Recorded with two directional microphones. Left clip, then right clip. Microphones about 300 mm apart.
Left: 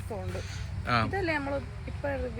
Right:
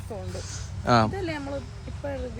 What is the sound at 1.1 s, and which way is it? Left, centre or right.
Speech, centre.